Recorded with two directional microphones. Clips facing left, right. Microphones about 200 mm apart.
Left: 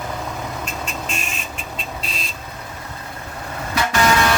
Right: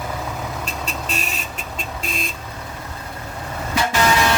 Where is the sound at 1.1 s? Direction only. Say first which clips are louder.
Right 1 dB; 40° right (ahead or behind).